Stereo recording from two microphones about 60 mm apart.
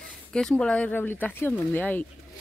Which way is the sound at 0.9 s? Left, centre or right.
Left.